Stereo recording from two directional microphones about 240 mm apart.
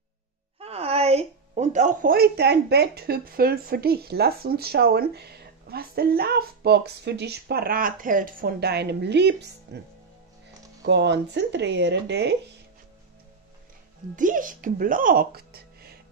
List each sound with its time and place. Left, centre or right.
0.6 s speech: right
10.8 s speech: right
14.1 s speech: right